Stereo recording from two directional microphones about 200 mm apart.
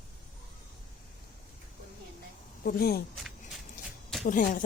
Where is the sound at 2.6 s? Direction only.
50° left (ahead or behind).